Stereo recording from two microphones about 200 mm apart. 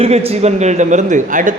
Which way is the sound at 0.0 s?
30° right (ahead or behind).